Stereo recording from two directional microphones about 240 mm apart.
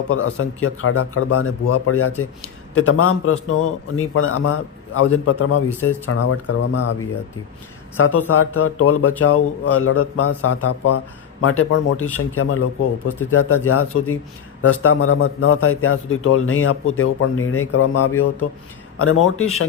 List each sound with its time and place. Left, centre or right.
0.1 s a man's voice: left
7.9 s a man's voice: left
11.4 s a man's voice: left